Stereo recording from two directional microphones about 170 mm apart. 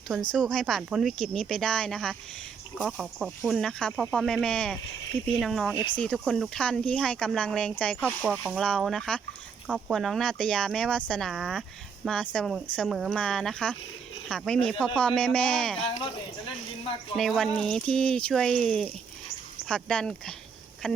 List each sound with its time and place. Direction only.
0.1 s speech: 5° left (ahead or behind)
5.7 s speech: 30° left (ahead or behind)
6.0 s speech: 5° left (ahead or behind)
8.2 s speech: 5° right (ahead or behind)
17.2 s speech: centre (ahead or behind)